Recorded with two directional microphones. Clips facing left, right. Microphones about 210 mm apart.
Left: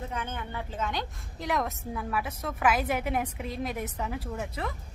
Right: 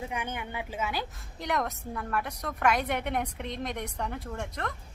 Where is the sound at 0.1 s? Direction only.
15° right (ahead or behind); by 4.7 s 5° left (ahead or behind).